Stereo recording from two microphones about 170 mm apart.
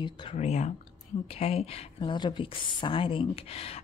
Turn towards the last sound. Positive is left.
turn(degrees=35)  # may be behind; listen again after turning